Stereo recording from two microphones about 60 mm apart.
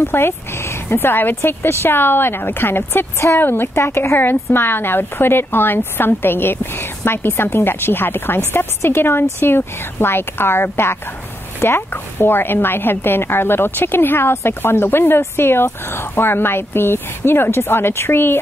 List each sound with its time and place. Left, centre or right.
0.1 s a woman's voice: left